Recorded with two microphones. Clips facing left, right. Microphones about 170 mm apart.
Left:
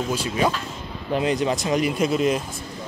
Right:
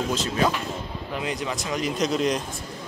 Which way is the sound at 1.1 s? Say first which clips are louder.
Left 8 dB; 30° left (ahead or behind).